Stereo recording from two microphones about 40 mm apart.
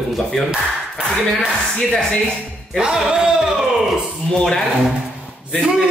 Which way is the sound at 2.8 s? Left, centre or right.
Centre.